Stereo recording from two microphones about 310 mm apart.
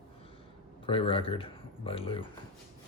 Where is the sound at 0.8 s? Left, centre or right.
Centre.